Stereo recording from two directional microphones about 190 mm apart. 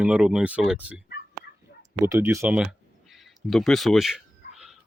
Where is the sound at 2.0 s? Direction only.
15° right (ahead or behind).